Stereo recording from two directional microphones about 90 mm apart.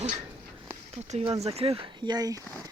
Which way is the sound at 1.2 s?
90° right.